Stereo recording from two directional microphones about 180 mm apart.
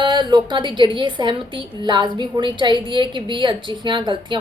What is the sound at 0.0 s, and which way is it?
A woman's voice, 25° right (ahead or behind).